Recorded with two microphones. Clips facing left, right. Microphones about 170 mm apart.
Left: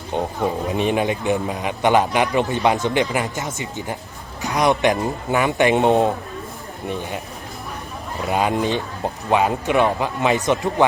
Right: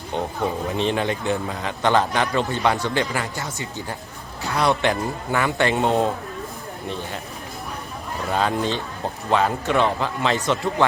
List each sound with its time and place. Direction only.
0.1 s a man's voice: 15° left (ahead or behind)
8.3 s a man's voice: 15° left (ahead or behind)